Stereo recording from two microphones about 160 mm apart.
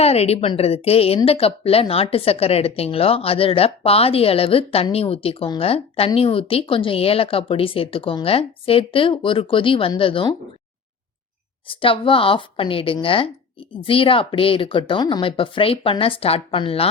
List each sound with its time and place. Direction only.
0.0 s a woman's voice: 40° left (ahead or behind)
11.7 s a woman's voice: 35° left (ahead or behind)